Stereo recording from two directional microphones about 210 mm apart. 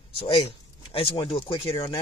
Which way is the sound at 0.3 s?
25° left (ahead or behind).